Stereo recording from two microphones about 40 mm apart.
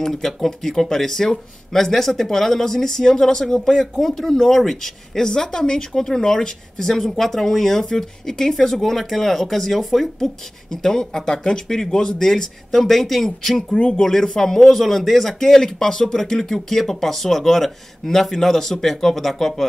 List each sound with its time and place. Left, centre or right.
0.0 s speech: centre
13.7 s speech: left
14.0 s speech: centre